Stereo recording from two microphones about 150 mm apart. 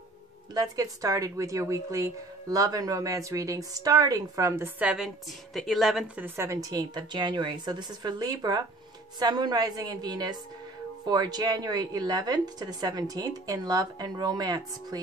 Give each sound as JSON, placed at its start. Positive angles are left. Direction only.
{"t": 0.6, "sound": "speech", "side_deg": -25}
{"t": 6.2, "sound": "speech", "side_deg": -15}